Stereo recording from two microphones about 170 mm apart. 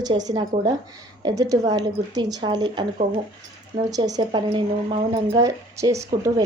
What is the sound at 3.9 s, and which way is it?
A woman's voice, 25° right (ahead or behind).